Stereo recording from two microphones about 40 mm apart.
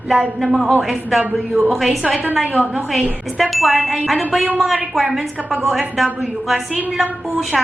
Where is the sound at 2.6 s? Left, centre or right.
Right.